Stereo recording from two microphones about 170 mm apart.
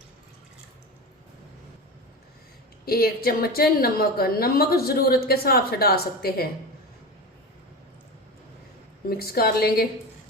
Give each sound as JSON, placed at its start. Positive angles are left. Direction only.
{"t": 2.8, "sound": "a woman's voice", "side_deg": 60}
{"t": 9.0, "sound": "a woman's voice", "side_deg": 65}